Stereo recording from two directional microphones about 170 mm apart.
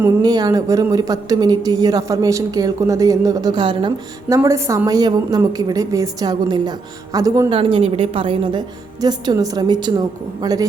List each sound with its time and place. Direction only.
0.0 s speech: 25° right (ahead or behind)
4.4 s speech: 15° right (ahead or behind)
7.6 s speech: 35° right (ahead or behind)